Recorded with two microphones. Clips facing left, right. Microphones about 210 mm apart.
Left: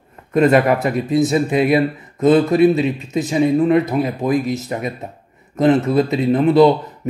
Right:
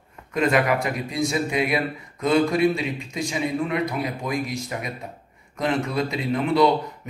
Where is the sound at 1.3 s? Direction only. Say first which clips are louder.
Left 6 dB; 30° left (ahead or behind).